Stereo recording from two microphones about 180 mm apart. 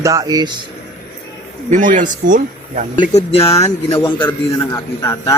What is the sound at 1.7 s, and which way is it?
Speech, 45° right (ahead or behind).